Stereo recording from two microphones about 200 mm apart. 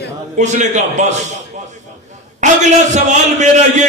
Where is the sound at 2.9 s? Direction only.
35° right (ahead or behind).